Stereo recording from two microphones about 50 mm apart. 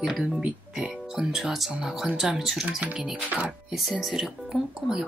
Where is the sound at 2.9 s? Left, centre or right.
Centre.